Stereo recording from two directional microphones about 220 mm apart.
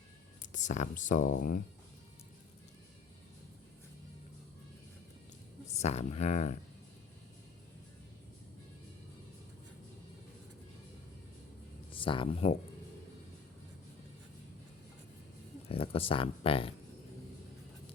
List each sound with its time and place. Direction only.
0.4 s speech: 35° left (ahead or behind)
5.7 s speech: 30° left (ahead or behind)
11.9 s speech: 25° left (ahead or behind)
15.7 s speech: 25° left (ahead or behind)